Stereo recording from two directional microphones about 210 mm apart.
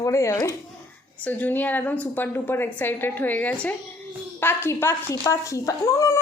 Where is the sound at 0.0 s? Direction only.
15° left (ahead or behind).